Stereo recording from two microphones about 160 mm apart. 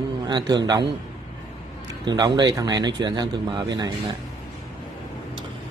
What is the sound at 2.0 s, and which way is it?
A man's voice, 25° right (ahead or behind).